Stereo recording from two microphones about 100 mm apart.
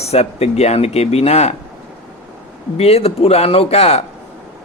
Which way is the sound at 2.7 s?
90° left.